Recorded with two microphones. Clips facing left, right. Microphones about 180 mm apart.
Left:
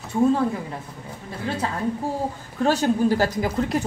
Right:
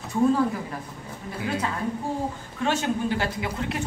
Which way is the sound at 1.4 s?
30° left (ahead or behind).